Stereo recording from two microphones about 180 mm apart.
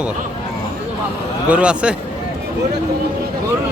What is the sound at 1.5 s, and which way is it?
Speech, 5° right (ahead or behind).